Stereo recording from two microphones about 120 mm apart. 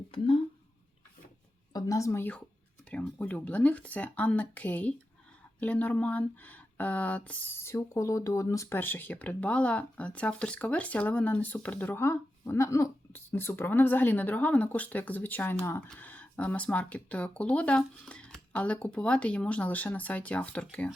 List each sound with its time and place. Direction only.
1.7 s speech: 25° left (ahead or behind); by 20.9 s 10° left (ahead or behind)